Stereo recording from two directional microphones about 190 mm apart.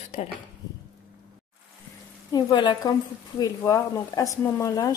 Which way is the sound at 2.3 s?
20° left (ahead or behind).